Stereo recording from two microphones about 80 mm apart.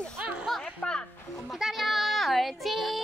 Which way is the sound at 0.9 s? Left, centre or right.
Centre.